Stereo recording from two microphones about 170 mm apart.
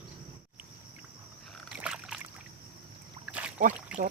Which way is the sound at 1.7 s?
5° right (ahead or behind).